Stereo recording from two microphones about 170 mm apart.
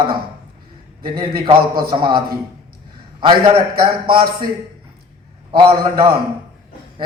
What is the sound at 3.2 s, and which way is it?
Speech, 30° right (ahead or behind).